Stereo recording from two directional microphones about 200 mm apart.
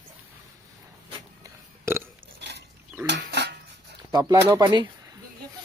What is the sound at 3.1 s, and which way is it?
Speech, 60° right (ahead or behind).